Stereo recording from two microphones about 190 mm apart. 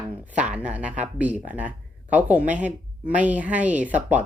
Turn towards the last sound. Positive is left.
turn(degrees=-10)  # may be behind; listen again after turning